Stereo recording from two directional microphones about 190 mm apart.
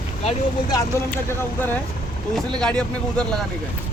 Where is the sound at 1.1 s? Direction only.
10° left (ahead or behind).